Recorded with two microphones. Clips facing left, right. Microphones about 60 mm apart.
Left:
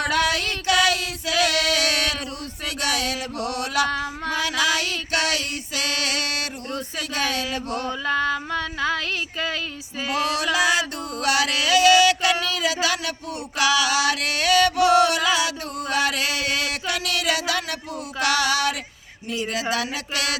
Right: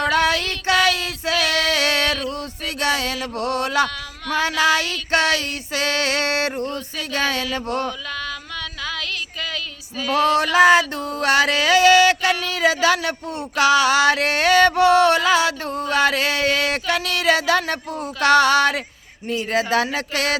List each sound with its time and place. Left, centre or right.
0.1 s female singing: right
2.6 s music: right
7.9 s female singing: left
10.1 s music: right